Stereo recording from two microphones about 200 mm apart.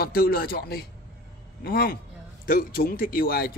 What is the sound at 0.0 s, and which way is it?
A man's voice, 45° left (ahead or behind).